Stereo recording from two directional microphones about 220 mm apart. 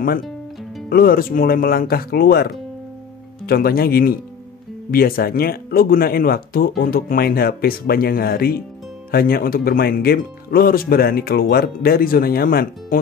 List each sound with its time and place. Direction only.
0.8 s speech: 40° left (ahead or behind)